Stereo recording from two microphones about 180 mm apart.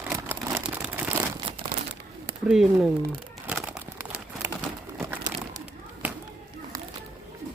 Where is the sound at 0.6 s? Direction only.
5° right (ahead or behind).